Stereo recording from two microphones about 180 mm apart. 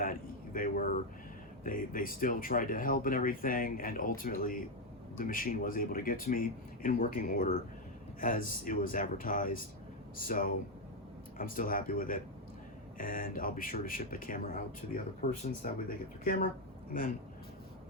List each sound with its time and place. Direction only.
0.0 s speech: 50° left (ahead or behind)